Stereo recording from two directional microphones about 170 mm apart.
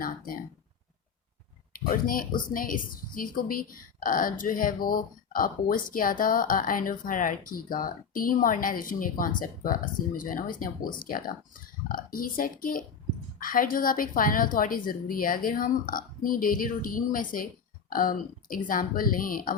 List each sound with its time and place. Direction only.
1.7 s a woman's voice: 55° left (ahead or behind)